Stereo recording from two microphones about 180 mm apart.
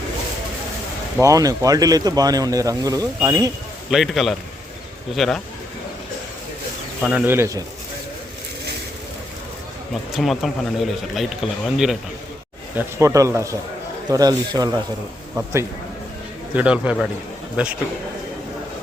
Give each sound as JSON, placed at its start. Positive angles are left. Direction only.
{"t": 1.2, "sound": "speech", "side_deg": -20}
{"t": 3.9, "sound": "speech", "side_deg": 0}
{"t": 7.0, "sound": "a man's voice", "side_deg": -5}
{"t": 10.2, "sound": "speech", "side_deg": 0}
{"t": 12.7, "sound": "a man's voice", "side_deg": -15}
{"t": 16.6, "sound": "a man's voice", "side_deg": -5}